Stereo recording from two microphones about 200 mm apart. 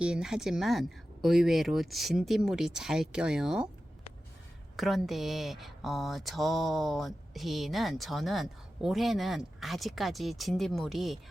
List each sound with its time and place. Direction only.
0.0 s speech: 5° right (ahead or behind)
4.8 s speech: centre (ahead or behind)